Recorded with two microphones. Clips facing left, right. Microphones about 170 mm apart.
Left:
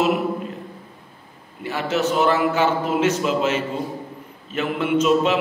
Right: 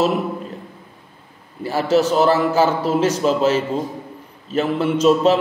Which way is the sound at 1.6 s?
35° right (ahead or behind).